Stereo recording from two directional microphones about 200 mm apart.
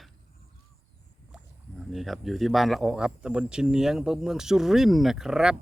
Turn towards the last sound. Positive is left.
turn(degrees=-5)  # may be behind; listen again after turning